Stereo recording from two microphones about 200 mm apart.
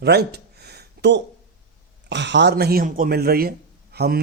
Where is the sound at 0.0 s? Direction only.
55° right (ahead or behind).